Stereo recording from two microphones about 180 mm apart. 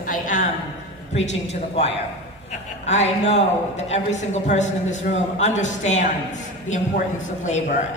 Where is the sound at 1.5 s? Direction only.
35° left (ahead or behind).